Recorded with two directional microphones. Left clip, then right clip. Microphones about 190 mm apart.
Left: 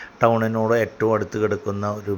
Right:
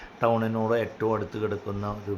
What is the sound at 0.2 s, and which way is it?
Speech, 15° left (ahead or behind).